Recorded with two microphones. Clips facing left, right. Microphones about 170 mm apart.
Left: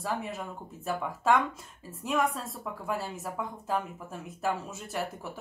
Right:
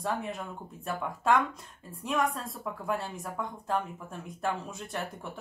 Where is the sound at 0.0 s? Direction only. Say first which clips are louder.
Right 1 dB; centre (ahead or behind).